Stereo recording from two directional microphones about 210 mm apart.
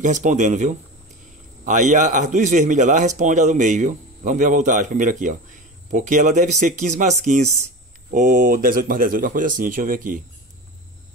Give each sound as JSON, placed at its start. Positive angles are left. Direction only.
{"t": 0.0, "sound": "a man's voice", "side_deg": -35}